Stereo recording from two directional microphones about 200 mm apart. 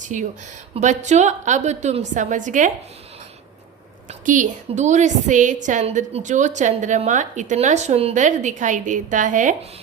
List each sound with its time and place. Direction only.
0.0 s a woman's voice: 40° right (ahead or behind)
4.1 s a woman's voice: 40° right (ahead or behind)